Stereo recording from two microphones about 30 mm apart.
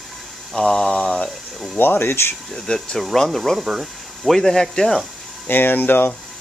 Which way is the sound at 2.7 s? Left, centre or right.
Left.